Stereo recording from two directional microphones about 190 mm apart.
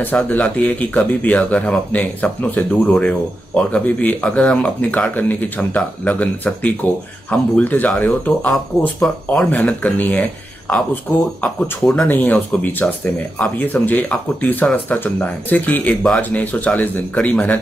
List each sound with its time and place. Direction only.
0.0 s speech: 10° left (ahead or behind)